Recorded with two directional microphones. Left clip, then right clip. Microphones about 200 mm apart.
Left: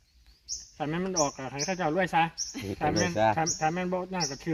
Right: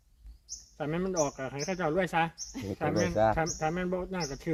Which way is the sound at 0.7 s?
20° left (ahead or behind).